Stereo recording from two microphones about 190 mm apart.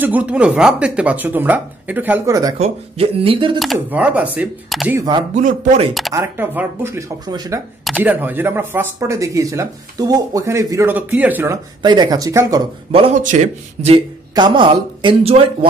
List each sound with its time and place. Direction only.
0.0 s speech: 10° right (ahead or behind)
2.6 s speech: 30° right (ahead or behind)
3.5 s speech: centre (ahead or behind)
4.9 s speech: 20° right (ahead or behind)
5.3 s speech: 40° right (ahead or behind)
6.1 s speech: 10° right (ahead or behind)
7.8 s speech: 5° right (ahead or behind)
12.9 s speech: 30° right (ahead or behind)
13.2 s speech: 40° right (ahead or behind)